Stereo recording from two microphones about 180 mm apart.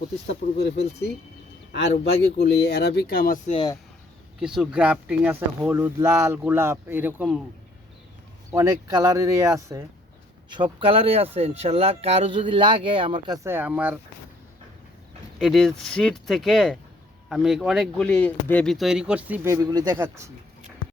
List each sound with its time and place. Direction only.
0.3 s speech: 70° left (ahead or behind)
3.4 s speech: 35° left (ahead or behind)
4.4 s speech: 5° right (ahead or behind)
8.4 s speech: 20° right (ahead or behind)
10.5 s speech: 30° right (ahead or behind); by 14.0 s 10° right (ahead or behind)
15.4 s speech: centre (ahead or behind); by 20.3 s 15° right (ahead or behind)